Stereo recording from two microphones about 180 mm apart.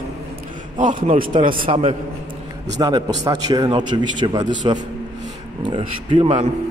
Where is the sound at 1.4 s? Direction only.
50° right (ahead or behind).